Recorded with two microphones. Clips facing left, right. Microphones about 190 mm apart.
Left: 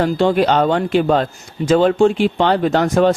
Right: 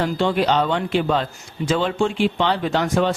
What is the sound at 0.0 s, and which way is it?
Speech, 45° left (ahead or behind).